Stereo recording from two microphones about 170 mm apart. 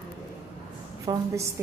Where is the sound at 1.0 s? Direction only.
15° right (ahead or behind).